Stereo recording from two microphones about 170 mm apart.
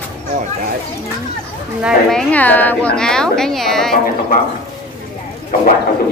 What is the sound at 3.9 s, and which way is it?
Speech, 60° left (ahead or behind).